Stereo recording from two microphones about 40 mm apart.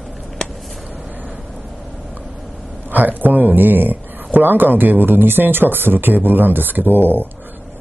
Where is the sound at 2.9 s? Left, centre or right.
Right.